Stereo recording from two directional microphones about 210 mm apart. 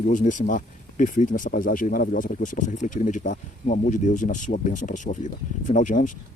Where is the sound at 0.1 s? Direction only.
35° left (ahead or behind).